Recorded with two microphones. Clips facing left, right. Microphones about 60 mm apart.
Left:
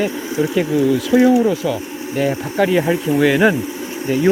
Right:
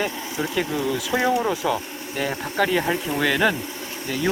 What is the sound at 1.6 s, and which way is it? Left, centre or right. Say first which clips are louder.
Speech: left 3 dB; centre.